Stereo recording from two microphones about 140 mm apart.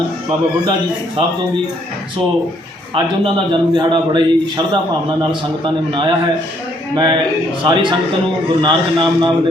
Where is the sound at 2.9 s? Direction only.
35° right (ahead or behind).